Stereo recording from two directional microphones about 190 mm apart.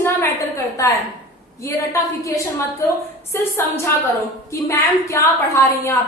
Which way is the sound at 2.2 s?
15° left (ahead or behind).